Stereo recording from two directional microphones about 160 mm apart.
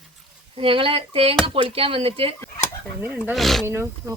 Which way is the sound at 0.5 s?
35° right (ahead or behind).